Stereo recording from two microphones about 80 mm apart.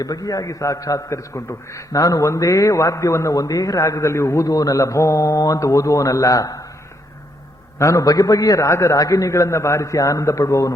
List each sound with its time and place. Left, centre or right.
0.0 s a man's voice: left
7.8 s a man's voice: left